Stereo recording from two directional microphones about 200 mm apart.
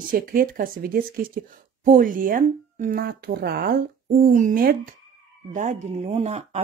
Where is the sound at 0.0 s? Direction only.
45° right (ahead or behind).